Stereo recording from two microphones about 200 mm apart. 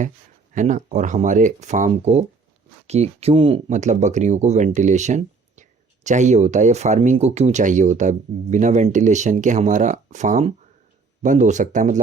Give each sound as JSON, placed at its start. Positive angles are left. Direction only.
{"t": 0.5, "sound": "speech", "side_deg": -40}